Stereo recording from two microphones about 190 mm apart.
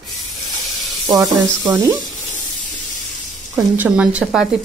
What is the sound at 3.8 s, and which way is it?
Speech, 5° right (ahead or behind).